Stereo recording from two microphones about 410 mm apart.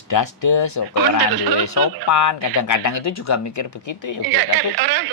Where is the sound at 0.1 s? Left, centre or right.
Left.